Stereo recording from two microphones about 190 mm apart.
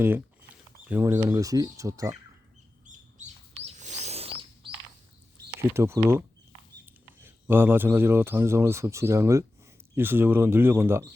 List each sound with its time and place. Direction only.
0.9 s a man's voice: 15° right (ahead or behind)
3.2 s chirp: 35° right (ahead or behind)
5.5 s a man's voice: 15° right (ahead or behind)